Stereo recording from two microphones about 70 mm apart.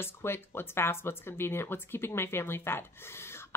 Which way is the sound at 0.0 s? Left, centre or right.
Left.